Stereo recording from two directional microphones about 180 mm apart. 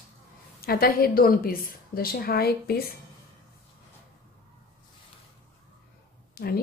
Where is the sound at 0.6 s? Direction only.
55° left (ahead or behind).